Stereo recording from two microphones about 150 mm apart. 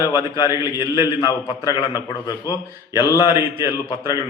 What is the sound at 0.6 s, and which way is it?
Speech, 20° right (ahead or behind).